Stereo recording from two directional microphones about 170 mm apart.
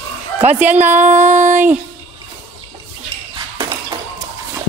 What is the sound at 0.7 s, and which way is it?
Speech, 45° right (ahead or behind).